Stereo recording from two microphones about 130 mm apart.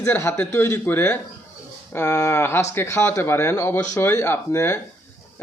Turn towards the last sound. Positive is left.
turn(degrees=20)  # may be behind; listen again after turning